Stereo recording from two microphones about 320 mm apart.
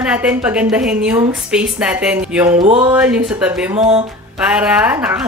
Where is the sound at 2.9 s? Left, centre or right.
Centre.